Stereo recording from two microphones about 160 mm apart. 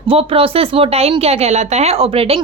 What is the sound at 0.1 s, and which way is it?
Speech, 35° right (ahead or behind).